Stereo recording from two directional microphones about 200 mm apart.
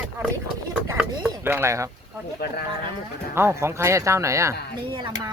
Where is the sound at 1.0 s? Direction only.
10° right (ahead or behind).